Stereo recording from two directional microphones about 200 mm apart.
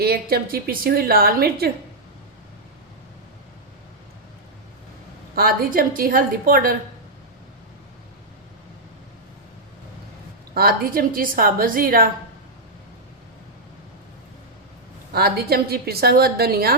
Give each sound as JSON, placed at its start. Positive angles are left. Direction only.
{"t": 0.0, "sound": "a woman's voice", "side_deg": -50}
{"t": 5.3, "sound": "a woman's voice", "side_deg": -45}
{"t": 10.5, "sound": "a woman's voice", "side_deg": -50}
{"t": 15.1, "sound": "a woman's voice", "side_deg": -50}